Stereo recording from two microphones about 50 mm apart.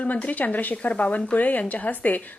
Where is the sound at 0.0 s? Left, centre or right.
Left.